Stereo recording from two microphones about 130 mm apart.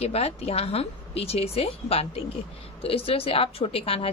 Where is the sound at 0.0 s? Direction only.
50° left (ahead or behind).